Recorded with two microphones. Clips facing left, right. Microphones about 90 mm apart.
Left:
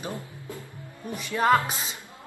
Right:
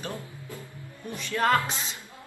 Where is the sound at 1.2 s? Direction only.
15° left (ahead or behind).